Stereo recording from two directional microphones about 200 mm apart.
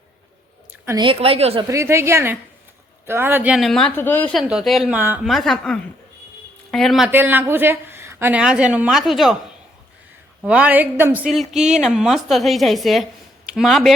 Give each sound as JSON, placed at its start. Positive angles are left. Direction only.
{"t": 0.9, "sound": "a woman's voice", "side_deg": -25}
{"t": 1.6, "sound": "a woman's voice", "side_deg": -15}
{"t": 10.4, "sound": "speech", "side_deg": -5}